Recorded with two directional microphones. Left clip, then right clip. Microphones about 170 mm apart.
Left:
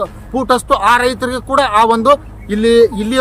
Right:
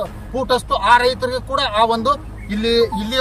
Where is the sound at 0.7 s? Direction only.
40° left (ahead or behind).